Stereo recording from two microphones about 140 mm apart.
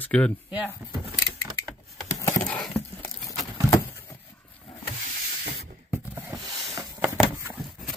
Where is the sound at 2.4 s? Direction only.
5° left (ahead or behind).